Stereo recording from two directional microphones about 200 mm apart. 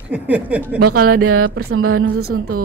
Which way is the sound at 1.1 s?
90° right.